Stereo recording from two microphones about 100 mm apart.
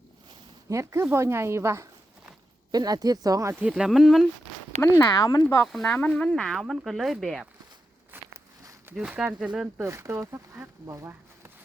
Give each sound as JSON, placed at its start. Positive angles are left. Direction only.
{"t": 0.7, "sound": "speech", "side_deg": -30}
{"t": 2.7, "sound": "speech", "side_deg": -40}
{"t": 3.6, "sound": "speech", "side_deg": -5}
{"t": 4.8, "sound": "speech", "side_deg": 30}
{"t": 5.8, "sound": "speech", "side_deg": 15}
{"t": 8.1, "sound": "a sound", "side_deg": -20}
{"t": 8.9, "sound": "speech", "side_deg": -10}
{"t": 9.8, "sound": "speech", "side_deg": -30}